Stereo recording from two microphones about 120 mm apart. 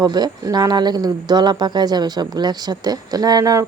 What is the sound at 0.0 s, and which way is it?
Speech, 35° right (ahead or behind).